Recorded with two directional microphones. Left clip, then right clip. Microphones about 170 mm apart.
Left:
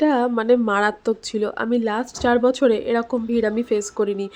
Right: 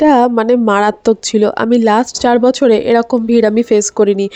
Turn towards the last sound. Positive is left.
turn(degrees=-40)  # may be behind; listen again after turning